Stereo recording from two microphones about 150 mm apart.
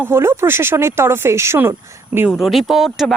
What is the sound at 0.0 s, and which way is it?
Speech, 15° right (ahead or behind).